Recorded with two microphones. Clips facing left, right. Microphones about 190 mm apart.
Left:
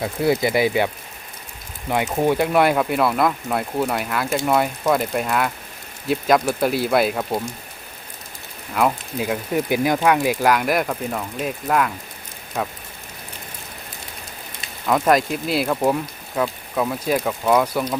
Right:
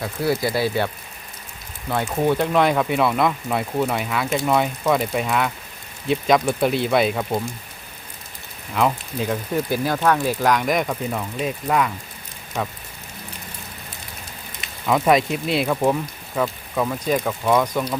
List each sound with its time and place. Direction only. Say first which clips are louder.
0.0 s speech: left 3 dB; 20° left (ahead or behind)
1.9 s speech: left 1 dB; 15° left (ahead or behind)
8.7 s speech: left 1 dB; 5° left (ahead or behind)
14.8 s speech: even; centre (ahead or behind)